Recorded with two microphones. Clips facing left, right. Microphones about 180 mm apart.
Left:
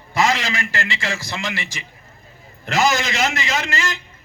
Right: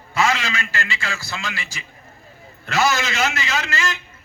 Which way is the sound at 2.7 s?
15° left (ahead or behind).